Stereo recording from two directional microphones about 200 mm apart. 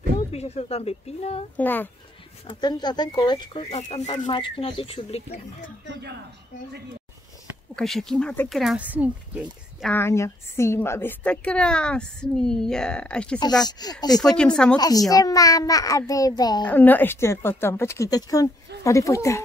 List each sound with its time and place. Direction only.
0.3 s a woman's voice: 30° left (ahead or behind)
1.6 s speech: 10° left (ahead or behind)
2.4 s speech: 20° left (ahead or behind)
3.6 s a woman's voice: 35° left (ahead or behind)
5.9 s speech: 55° right (ahead or behind)
7.7 s a woman's voice: centre (ahead or behind)
9.9 s a woman's voice: 15° left (ahead or behind)
13.4 s speech: 20° left (ahead or behind)
14.1 s a woman's voice: 5° left (ahead or behind)
14.8 s speech: 20° left (ahead or behind)
16.6 s speech: 10° left (ahead or behind)